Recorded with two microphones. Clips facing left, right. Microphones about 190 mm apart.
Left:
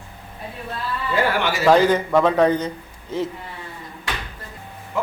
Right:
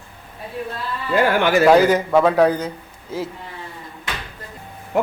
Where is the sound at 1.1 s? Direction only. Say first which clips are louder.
Right 5 dB; 50° right (ahead or behind).